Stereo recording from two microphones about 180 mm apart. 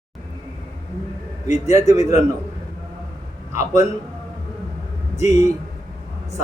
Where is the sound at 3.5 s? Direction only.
15° right (ahead or behind).